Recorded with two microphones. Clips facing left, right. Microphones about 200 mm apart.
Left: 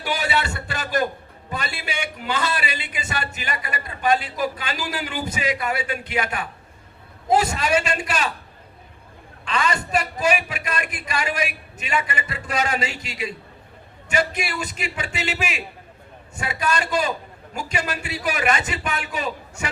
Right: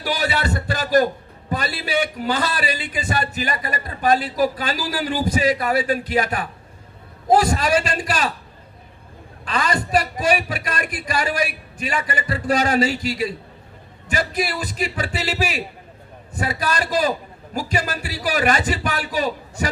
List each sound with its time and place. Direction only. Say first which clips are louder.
0.0 s a sound: right 2 dB; 40° right (ahead or behind)
1.5 s a man's voice: right 5 dB; 40° right (ahead or behind)
9.4 s a man's voice: right 1 dB; 40° right (ahead or behind)